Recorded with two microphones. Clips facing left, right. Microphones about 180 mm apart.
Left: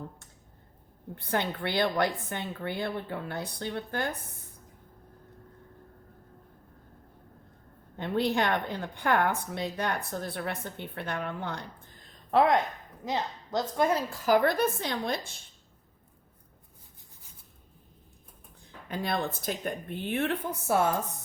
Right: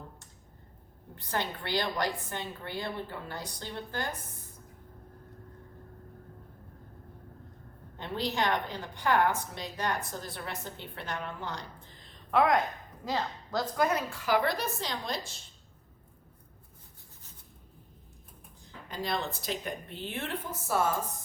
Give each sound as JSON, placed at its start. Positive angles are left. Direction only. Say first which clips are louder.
{"t": 1.1, "sound": "a woman's voice", "louder": "left 4 dB", "side_deg": 55}
{"t": 7.9, "sound": "a woman's voice", "louder": "left 5 dB", "side_deg": 55}
{"t": 12.3, "sound": "a woman's voice", "louder": "left 2 dB", "side_deg": 30}
{"t": 18.9, "sound": "a woman's voice", "louder": "left 3 dB", "side_deg": 55}